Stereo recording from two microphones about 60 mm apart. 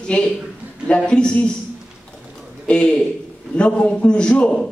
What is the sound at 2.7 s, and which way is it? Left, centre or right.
A man's voice, centre.